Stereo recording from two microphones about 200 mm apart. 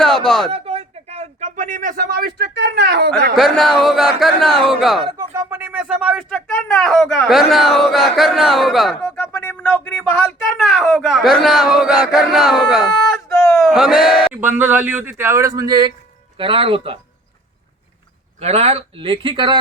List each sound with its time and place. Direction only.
0.0 s a sound: centre (ahead or behind)
0.5 s speech: 30° right (ahead or behind); by 3.1 s 55° right (ahead or behind)
3.3 s speech: centre (ahead or behind)
5.0 s speech: 20° right (ahead or behind)
6.3 s speech: 5° left (ahead or behind); by 17.0 s 30° right (ahead or behind)
18.3 s speech: 30° right (ahead or behind)